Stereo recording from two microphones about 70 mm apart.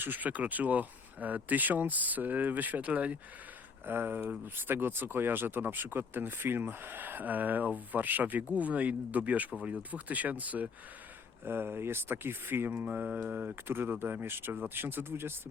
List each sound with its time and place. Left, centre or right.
0.0 s speech: right
3.8 s speech: right
11.4 s speech: right